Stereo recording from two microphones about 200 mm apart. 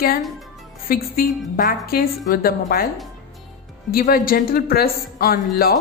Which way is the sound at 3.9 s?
45° left (ahead or behind).